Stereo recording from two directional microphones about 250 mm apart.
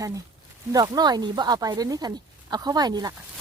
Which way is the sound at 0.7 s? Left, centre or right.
Centre.